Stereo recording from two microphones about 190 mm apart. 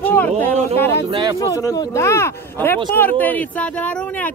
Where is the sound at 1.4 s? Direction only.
20° left (ahead or behind).